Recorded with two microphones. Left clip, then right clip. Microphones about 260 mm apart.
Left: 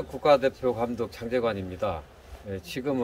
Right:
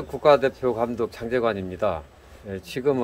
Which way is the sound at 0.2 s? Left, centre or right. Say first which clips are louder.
Right 3 dB; centre.